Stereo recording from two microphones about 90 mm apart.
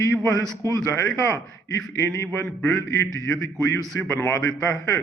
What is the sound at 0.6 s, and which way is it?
Speech, 40° right (ahead or behind).